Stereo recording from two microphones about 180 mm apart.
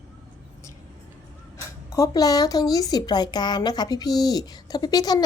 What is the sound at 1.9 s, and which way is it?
A woman's voice, 20° left (ahead or behind).